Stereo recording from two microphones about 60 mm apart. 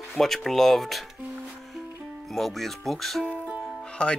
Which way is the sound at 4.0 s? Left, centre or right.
Centre.